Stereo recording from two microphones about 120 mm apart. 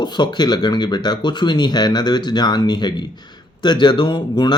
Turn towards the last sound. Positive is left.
turn(degrees=40)  # may be behind; listen again after turning